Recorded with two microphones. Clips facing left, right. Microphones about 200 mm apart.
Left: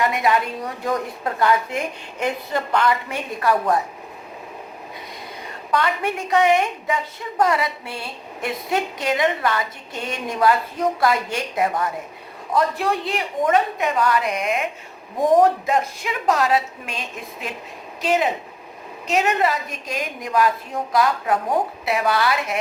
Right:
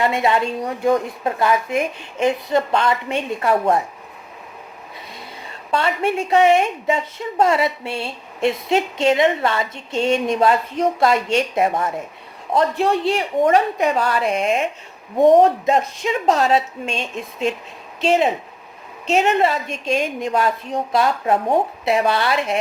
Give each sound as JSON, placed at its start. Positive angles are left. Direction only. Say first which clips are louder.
{"t": 0.0, "sound": "a woman's voice", "louder": "right 2 dB", "side_deg": -25}
{"t": 5.7, "sound": "a woman's voice", "louder": "right 3 dB", "side_deg": -25}